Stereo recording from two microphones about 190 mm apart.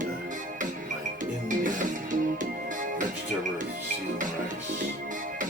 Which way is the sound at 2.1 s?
45° right (ahead or behind).